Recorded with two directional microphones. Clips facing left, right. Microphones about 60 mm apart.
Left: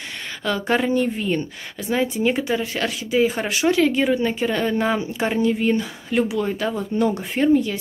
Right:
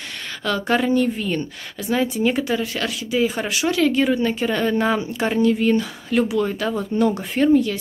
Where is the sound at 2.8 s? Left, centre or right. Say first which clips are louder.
Left 4 dB; left.